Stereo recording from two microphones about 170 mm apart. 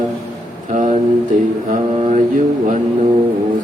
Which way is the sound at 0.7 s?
50° right (ahead or behind).